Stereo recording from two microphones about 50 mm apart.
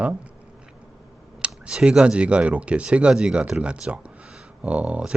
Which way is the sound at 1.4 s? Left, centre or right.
Centre.